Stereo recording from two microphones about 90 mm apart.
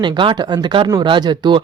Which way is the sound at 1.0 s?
55° right (ahead or behind).